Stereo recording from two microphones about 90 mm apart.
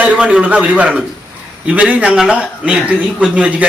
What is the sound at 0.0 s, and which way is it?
A man's voice, 15° right (ahead or behind).